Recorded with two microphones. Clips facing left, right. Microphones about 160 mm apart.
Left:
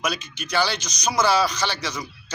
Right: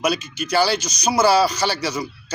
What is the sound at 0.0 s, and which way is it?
Speech, 10° right (ahead or behind).